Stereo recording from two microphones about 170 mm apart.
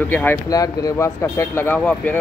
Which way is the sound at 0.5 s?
20° left (ahead or behind).